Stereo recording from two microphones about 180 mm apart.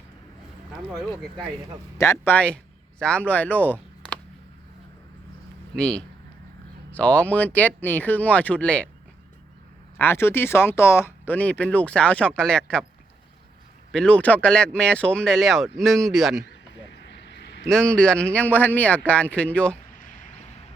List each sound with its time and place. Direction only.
2.0 s speech: 15° left (ahead or behind)
5.7 s speech: 5° left (ahead or behind)
10.0 s speech: 15° left (ahead or behind)
13.9 s speech: 5° left (ahead or behind)
16.9 s vehicle: 80° left
17.7 s speech: 5° left (ahead or behind)
20.0 s a sound: 45° left (ahead or behind)